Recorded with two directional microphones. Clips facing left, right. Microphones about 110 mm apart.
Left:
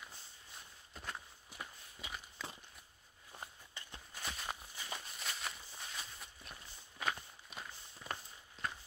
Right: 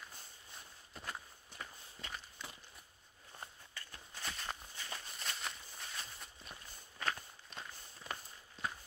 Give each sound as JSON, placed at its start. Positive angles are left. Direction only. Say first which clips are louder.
{"t": 0.9, "sound": "walk", "louder": "even", "side_deg": 0}
{"t": 3.7, "sound": "walk", "louder": "even", "side_deg": 20}
{"t": 4.2, "sound": "walk", "louder": "even", "side_deg": 5}